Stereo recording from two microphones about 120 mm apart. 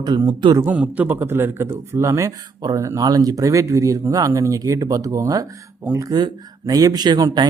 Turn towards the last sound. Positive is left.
turn(degrees=-35)  # may be behind; listen again after turning